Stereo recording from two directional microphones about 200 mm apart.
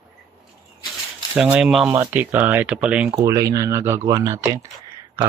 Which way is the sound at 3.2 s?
15° right (ahead or behind).